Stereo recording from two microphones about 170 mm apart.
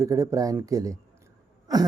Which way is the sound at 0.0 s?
20° right (ahead or behind).